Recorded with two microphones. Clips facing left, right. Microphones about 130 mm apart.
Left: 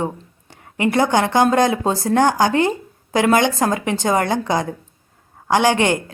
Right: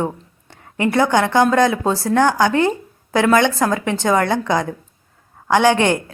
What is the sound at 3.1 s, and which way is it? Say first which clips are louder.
Speech: right 1 dB; 20° left (ahead or behind).